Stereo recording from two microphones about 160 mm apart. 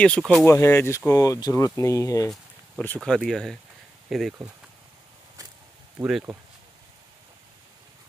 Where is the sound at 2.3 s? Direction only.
5° left (ahead or behind).